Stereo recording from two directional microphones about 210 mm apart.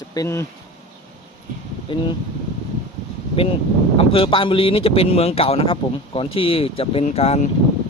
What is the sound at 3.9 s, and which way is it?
Speech, 25° left (ahead or behind).